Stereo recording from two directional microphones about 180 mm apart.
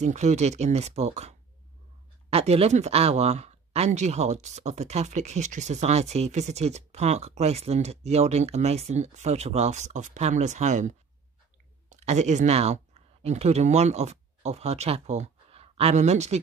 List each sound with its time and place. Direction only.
0.0 s speech: 40° right (ahead or behind)